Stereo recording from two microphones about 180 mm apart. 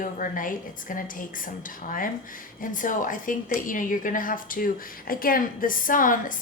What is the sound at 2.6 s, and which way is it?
A woman's voice, 45° left (ahead or behind).